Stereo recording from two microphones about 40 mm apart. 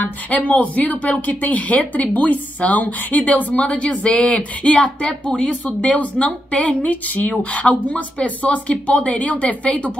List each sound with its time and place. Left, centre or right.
0.0 s speech: left
3.5 s speech: left
5.0 s speech: left